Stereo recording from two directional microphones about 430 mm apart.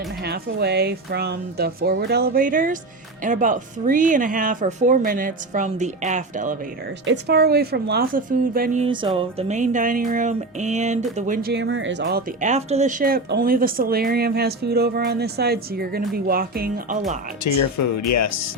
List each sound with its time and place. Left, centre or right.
0.3 s a woman's voice: right
17.4 s speech: left